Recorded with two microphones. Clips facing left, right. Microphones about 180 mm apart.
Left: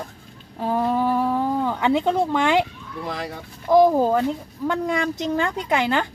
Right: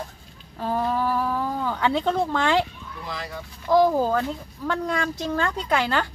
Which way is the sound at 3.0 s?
60° left (ahead or behind).